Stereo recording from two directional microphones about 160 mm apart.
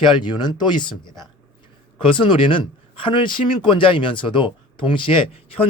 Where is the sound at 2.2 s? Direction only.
30° left (ahead or behind).